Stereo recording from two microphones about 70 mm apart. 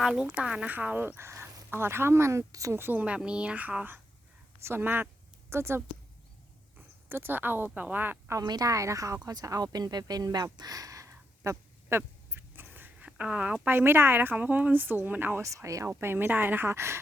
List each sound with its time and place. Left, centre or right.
0.0 s speech: centre; by 2.7 s right
2.7 s speech: right
3.2 s speech: centre
8.4 s a woman's voice: right
8.7 s speech: right
11.9 s dog: right
13.1 s speech: centre
13.7 s speech: right
15.4 s speech: right